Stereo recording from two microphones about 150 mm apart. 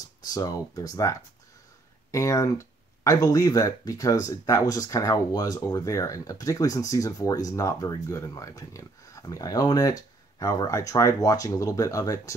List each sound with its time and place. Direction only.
0.3 s speech: 25° left (ahead or behind)